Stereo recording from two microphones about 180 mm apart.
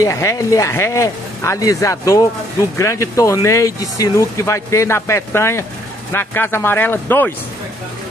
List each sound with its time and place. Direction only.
0.0 s speech: 15° left (ahead or behind)